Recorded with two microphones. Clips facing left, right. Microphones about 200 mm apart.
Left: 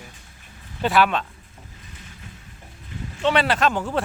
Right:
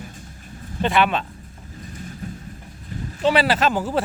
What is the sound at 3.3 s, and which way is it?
Speech, 5° right (ahead or behind).